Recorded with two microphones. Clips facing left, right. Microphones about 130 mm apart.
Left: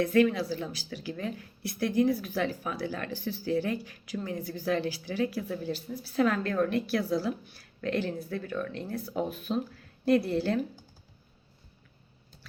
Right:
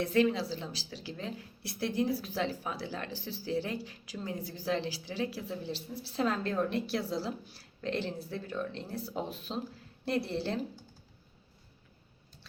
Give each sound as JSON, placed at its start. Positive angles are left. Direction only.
{"t": 0.0, "sound": "a woman's voice", "side_deg": -25}